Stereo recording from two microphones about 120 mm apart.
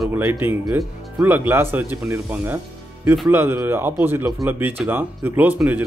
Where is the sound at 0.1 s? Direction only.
15° right (ahead or behind).